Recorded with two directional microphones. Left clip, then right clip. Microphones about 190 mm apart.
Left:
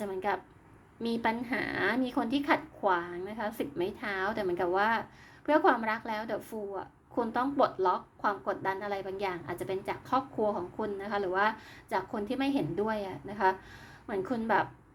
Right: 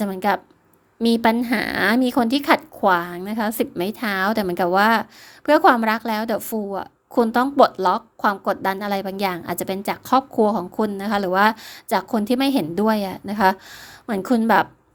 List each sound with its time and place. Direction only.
0.0 s a woman's voice: 50° right (ahead or behind)